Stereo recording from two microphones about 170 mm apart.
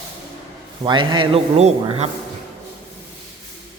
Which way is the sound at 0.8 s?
25° right (ahead or behind).